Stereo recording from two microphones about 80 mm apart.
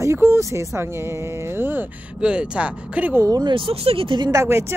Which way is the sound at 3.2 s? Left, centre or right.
Right.